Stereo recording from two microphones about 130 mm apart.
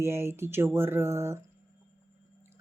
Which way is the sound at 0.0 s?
20° right (ahead or behind).